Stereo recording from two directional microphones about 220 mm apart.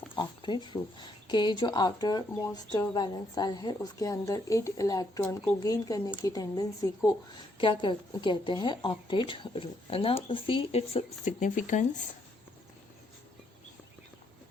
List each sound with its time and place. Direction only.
0.2 s a woman's voice: 20° left (ahead or behind)